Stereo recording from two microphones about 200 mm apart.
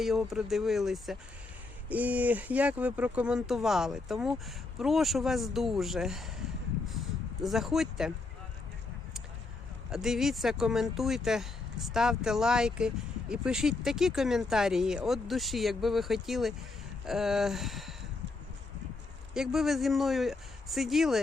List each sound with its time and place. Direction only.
0.0 s speech: centre (ahead or behind)
7.4 s speech: centre (ahead or behind)
9.9 s speech: centre (ahead or behind)
19.3 s speech: centre (ahead or behind)